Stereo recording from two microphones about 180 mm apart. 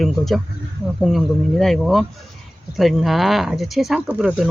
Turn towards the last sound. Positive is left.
turn(degrees=-5)  # may be behind; listen again after turning